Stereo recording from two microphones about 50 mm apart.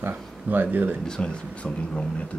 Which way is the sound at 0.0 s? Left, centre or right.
Right.